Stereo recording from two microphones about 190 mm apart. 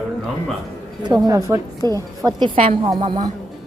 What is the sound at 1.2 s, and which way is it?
A woman's voice, 15° right (ahead or behind).